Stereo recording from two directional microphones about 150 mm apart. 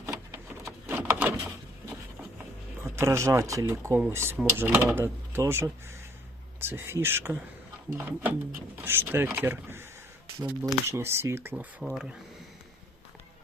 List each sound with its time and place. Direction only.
0.0 s printer: 20° right (ahead or behind)
0.9 s a sound: 10° right (ahead or behind)
2.8 s speech: 15° right (ahead or behind)
11.8 s speech: 5° right (ahead or behind)